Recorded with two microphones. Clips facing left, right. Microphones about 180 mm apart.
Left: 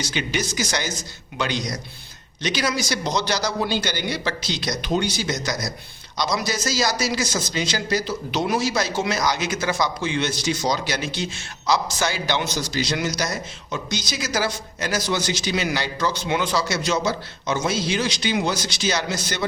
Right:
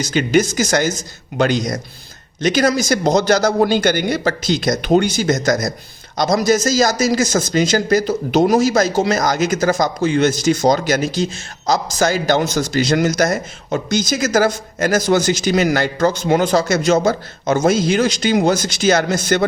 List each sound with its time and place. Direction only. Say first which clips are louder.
0.0 s speech: right 11 dB; 45° right (ahead or behind)